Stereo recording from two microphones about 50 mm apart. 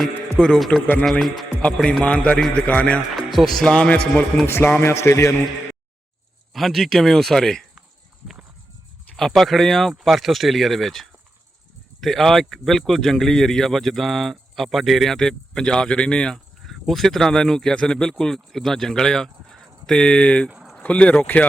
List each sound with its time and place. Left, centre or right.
0.3 s a man's voice: centre
1.6 s a man's voice: centre
3.2 s speech: centre
3.7 s a man's voice: centre
4.4 s a man's voice: left
4.8 s a man's voice: left
6.5 s speech: centre
9.1 s speech: centre
15.1 s speech: centre
21.2 s speech: left